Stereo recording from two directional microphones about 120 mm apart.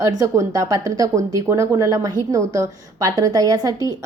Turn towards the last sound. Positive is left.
turn(degrees=-30)  # may be behind; listen again after turning